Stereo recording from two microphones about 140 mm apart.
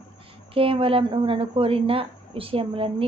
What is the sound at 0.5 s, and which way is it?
Speech, 40° right (ahead or behind).